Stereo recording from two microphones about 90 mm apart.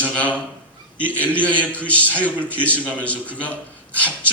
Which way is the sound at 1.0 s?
15° left (ahead or behind).